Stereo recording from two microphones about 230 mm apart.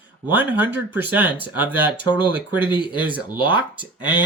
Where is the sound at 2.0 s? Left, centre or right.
Centre.